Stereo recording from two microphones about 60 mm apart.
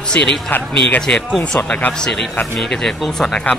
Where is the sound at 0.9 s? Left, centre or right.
Centre.